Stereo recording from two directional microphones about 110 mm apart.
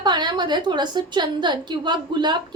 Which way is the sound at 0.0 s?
40° right (ahead or behind).